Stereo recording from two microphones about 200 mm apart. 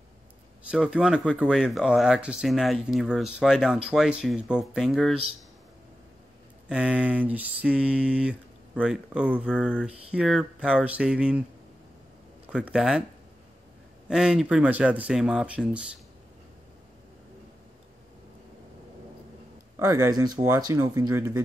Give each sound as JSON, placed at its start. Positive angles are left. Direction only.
{"t": 0.7, "sound": "speech", "side_deg": -5}
{"t": 6.7, "sound": "speech", "side_deg": -5}
{"t": 12.4, "sound": "speech", "side_deg": -5}
{"t": 14.0, "sound": "speech", "side_deg": -5}
{"t": 19.8, "sound": "speech", "side_deg": -15}